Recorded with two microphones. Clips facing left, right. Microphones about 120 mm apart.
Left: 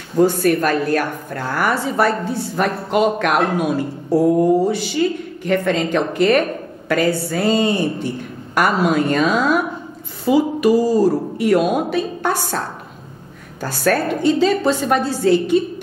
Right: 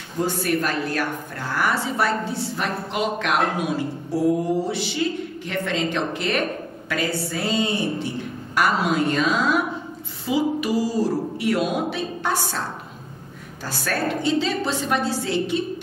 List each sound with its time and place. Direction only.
0.2 s a woman's voice: 50° left (ahead or behind)